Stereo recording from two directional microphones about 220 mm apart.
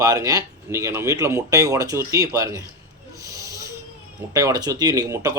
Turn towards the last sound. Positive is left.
turn(degrees=-15)  # may be behind; listen again after turning